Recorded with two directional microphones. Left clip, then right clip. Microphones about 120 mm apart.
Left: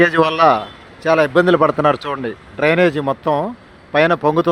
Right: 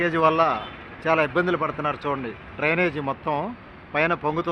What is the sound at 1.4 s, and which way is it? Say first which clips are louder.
Speech: left 11 dB; 90° left.